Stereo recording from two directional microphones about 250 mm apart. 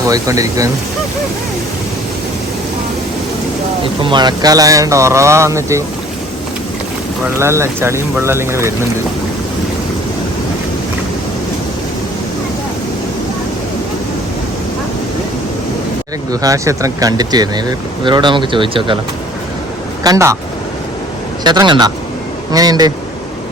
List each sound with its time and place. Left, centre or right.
0.0 s speech: centre
4.0 s speech: centre
7.3 s speech: centre
16.3 s speech: centre
20.1 s speech: centre
21.4 s speech: centre